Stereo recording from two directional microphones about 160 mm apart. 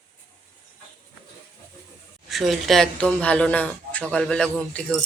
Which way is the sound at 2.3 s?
Centre (ahead or behind).